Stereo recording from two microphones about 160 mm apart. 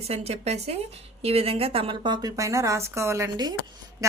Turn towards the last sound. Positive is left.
turn(degrees=-20)  # may be behind; listen again after turning